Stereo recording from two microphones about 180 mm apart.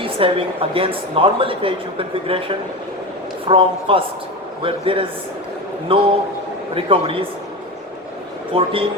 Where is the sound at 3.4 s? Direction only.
30° right (ahead or behind).